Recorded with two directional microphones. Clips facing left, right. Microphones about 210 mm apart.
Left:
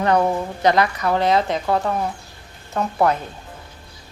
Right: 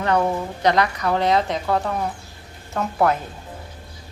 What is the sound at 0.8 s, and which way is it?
Speech, centre (ahead or behind).